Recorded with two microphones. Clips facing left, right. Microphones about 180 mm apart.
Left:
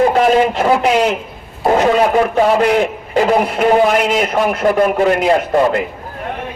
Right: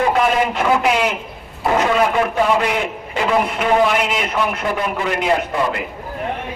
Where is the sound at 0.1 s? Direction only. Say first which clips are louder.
Left 5 dB; 35° left (ahead or behind).